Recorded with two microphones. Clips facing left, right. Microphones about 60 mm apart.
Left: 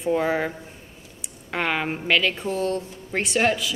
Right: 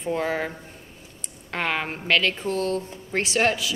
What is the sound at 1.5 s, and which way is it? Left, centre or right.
A woman's voice, centre.